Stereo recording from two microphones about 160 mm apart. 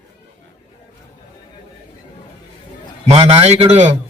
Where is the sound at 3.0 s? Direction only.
40° right (ahead or behind).